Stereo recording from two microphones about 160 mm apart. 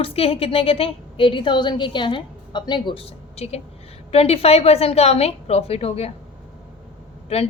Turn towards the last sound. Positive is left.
turn(degrees=40)  # may be behind; listen again after turning